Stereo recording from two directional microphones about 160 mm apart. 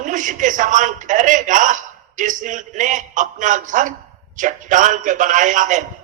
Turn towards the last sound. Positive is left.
turn(degrees=-50)  # may be behind; listen again after turning